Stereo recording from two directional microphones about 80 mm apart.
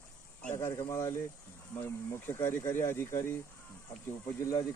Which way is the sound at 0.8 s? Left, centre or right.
Left.